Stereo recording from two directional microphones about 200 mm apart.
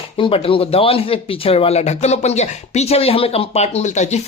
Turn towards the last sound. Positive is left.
turn(degrees=35)  # may be behind; listen again after turning